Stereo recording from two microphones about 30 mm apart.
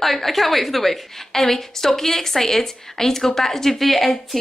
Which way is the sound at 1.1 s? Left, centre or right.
Centre.